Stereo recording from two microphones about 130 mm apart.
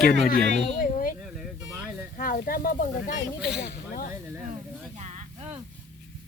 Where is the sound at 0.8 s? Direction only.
90° left.